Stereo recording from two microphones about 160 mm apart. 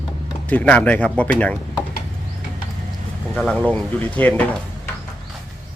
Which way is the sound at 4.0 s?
10° left (ahead or behind).